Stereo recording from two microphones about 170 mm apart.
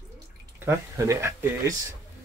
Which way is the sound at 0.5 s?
15° right (ahead or behind).